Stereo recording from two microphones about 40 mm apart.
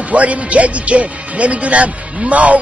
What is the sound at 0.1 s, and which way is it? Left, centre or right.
Speech, right.